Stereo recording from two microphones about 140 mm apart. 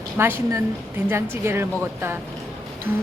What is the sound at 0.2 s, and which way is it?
A woman's voice, 15° right (ahead or behind).